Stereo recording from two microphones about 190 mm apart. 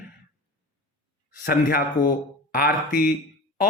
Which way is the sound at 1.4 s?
50° left (ahead or behind).